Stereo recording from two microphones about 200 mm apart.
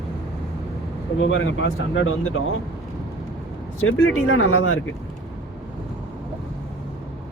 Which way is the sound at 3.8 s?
90° left.